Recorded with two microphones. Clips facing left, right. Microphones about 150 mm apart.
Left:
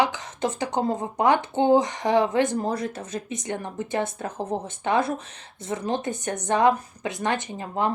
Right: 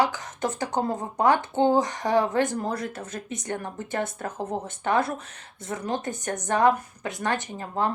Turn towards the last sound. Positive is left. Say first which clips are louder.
# left 1 dB
turn(degrees=20)  # may be behind; listen again after turning